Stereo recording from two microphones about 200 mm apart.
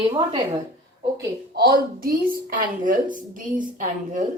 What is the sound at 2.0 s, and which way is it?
A woman's voice, 45° right (ahead or behind).